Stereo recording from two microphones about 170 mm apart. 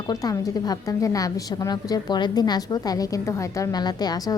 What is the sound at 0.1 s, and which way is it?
A woman's voice, 20° left (ahead or behind).